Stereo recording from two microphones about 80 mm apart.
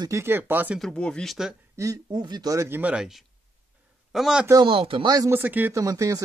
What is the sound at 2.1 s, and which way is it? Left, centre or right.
Speech, right.